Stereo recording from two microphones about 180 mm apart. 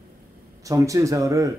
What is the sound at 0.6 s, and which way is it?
Speech, 15° right (ahead or behind).